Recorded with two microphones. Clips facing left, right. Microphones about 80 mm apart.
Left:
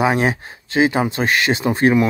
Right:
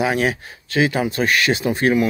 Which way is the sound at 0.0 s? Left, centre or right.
Left.